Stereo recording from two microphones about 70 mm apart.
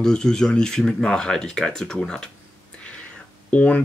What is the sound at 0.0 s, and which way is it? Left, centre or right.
Speech, centre.